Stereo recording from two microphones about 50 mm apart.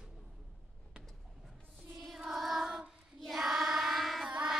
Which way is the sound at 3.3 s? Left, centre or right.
Centre.